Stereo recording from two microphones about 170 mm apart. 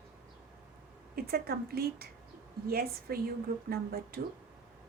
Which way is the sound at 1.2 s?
65° right (ahead or behind).